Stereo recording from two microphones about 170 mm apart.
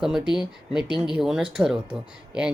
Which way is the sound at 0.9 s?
25° left (ahead or behind).